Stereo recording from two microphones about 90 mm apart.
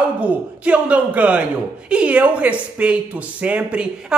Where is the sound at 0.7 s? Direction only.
15° right (ahead or behind).